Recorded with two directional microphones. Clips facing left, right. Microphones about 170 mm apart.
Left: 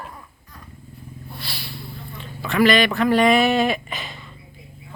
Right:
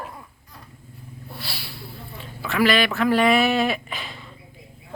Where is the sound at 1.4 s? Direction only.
10° right (ahead or behind).